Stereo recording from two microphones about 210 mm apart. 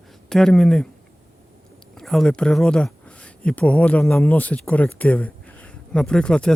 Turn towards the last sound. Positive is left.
turn(degrees=5)  # may be behind; listen again after turning